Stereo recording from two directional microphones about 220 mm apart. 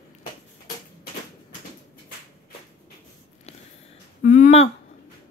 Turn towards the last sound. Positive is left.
turn(degrees=30)  # may be behind; listen again after turning